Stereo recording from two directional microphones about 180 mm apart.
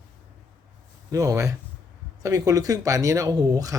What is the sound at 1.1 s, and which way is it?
Speech, 20° right (ahead or behind).